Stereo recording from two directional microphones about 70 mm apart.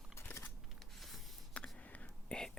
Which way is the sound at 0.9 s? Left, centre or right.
Centre.